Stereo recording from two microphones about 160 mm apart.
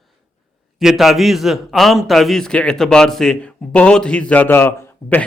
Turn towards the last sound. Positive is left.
turn(degrees=10)  # may be behind; listen again after turning